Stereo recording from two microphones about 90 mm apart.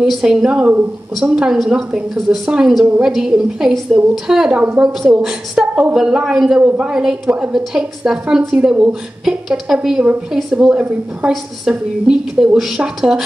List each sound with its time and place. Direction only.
0.0 s a woman's voice: 5° right (ahead or behind)
7.2 s a woman's voice: 15° right (ahead or behind)
7.5 s a woman's voice: 5° right (ahead or behind)